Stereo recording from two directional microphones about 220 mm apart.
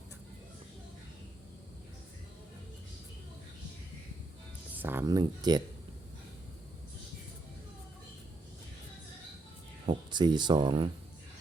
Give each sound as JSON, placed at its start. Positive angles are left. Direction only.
{"t": 4.8, "sound": "speech", "side_deg": -10}
{"t": 9.8, "sound": "speech", "side_deg": -20}